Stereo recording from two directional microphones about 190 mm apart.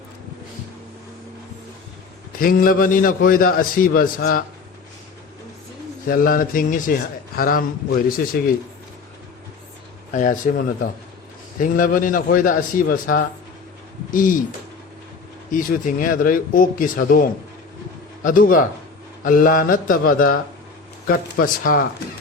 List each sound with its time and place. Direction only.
2.4 s a man's voice: 50° left (ahead or behind)
6.1 s a man's voice: 50° left (ahead or behind)
10.2 s a man's voice: 45° left (ahead or behind)
11.6 s a man's voice: 45° left (ahead or behind)
15.5 s a man's voice: 45° left (ahead or behind)